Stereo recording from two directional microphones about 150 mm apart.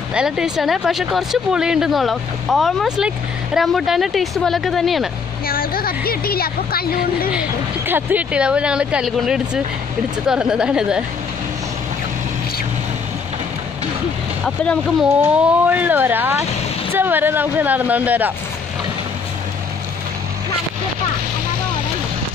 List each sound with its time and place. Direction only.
0.1 s speech: 5° right (ahead or behind)
5.5 s speech: 80° left
7.3 s speech: 10° right (ahead or behind)
14.4 s speech: 5° left (ahead or behind)
15.3 s speech: 10° right (ahead or behind)